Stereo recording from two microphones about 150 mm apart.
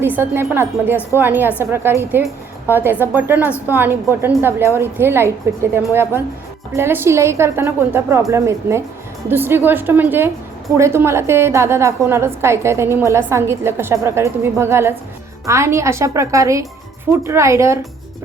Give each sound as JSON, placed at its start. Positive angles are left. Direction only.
{"t": 0.0, "sound": "a woman's voice", "side_deg": -15}